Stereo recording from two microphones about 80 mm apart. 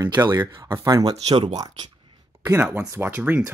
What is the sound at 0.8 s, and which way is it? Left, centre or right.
Speech, right.